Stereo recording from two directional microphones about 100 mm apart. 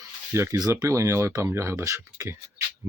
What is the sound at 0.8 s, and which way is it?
Speech, 30° right (ahead or behind).